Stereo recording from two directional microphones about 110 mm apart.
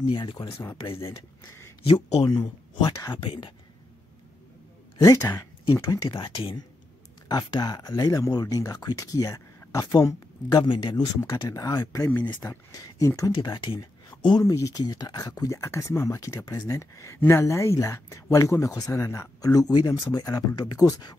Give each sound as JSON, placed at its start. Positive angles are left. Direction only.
{"t": 0.0, "sound": "speech", "side_deg": 45}
{"t": 0.6, "sound": "speech", "side_deg": 30}
{"t": 0.8, "sound": "speech", "side_deg": 55}
{"t": 2.2, "sound": "speech", "side_deg": 40}
{"t": 3.2, "sound": "speech", "side_deg": 50}
{"t": 4.9, "sound": "speech", "side_deg": 35}
{"t": 7.2, "sound": "speech", "side_deg": 35}
{"t": 11.2, "sound": "speech", "side_deg": 30}
{"t": 14.4, "sound": "speech", "side_deg": 30}